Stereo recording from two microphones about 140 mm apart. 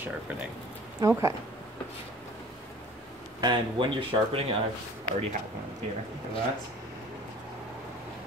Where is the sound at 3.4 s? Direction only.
35° right (ahead or behind).